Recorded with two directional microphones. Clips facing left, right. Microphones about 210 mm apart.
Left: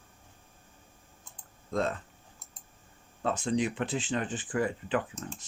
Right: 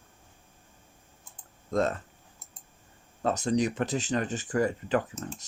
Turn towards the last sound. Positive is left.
turn(degrees=-45)  # may be behind; listen again after turning